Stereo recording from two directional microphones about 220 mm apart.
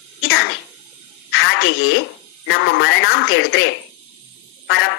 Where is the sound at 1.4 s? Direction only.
55° left (ahead or behind).